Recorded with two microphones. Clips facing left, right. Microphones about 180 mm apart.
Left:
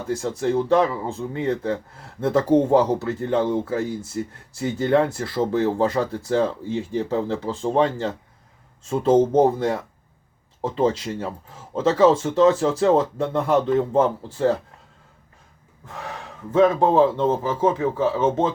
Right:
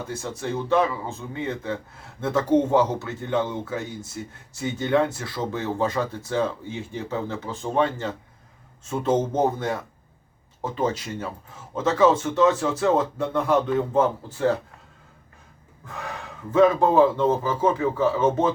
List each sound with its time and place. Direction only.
0.3 s speech: 35° left (ahead or behind)
16.8 s speech: 25° left (ahead or behind)